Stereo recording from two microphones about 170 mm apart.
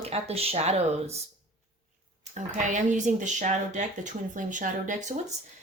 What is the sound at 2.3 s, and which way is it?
Speech, 45° right (ahead or behind).